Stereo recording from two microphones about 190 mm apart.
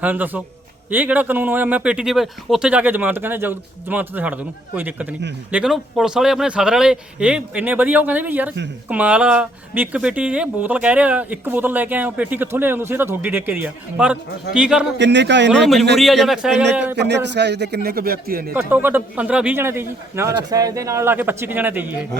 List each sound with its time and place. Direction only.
0.0 s speech: 10° right (ahead or behind)
14.9 s speech: 70° right (ahead or behind)
15.6 s speech: centre (ahead or behind)
17.0 s a man's voice: 65° right (ahead or behind)
18.5 s speech: 10° right (ahead or behind)